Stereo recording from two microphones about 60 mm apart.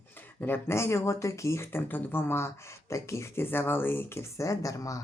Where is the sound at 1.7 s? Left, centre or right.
Left.